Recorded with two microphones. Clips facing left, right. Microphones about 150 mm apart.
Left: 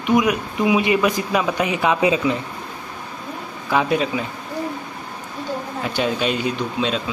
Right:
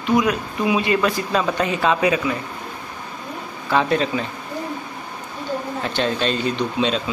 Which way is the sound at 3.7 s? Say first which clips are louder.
Even; 10° left (ahead or behind).